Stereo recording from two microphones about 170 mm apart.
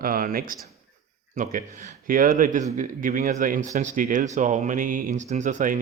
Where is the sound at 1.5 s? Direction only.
55° right (ahead or behind).